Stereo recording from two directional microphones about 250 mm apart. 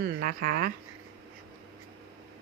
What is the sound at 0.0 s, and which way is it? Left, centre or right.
Speech, right.